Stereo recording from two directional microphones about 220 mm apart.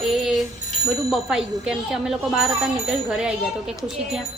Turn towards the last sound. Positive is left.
turn(degrees=-5)  # may be behind; listen again after turning